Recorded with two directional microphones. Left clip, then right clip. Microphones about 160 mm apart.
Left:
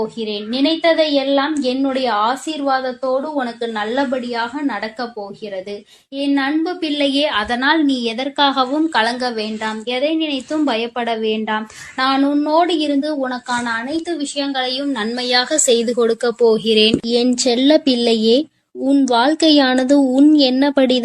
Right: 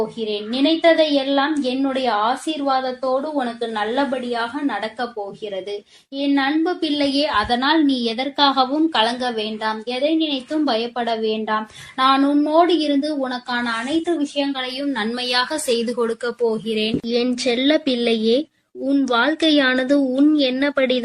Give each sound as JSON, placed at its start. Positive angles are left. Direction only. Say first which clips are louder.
{"t": 0.2, "sound": "a woman's voice", "louder": "left 1 dB", "side_deg": 35}
{"t": 6.1, "sound": "a woman's voice", "louder": "left 1 dB", "side_deg": 35}
{"t": 14.2, "sound": "a woman's voice", "louder": "left 1 dB", "side_deg": 70}
{"t": 14.9, "sound": "a woman's voice", "louder": "left 2 dB", "side_deg": 20}
{"t": 16.0, "sound": "a woman's voice", "louder": "left 7 dB", "side_deg": 30}
{"t": 17.1, "sound": "a woman's voice", "louder": "left 4 dB", "side_deg": 15}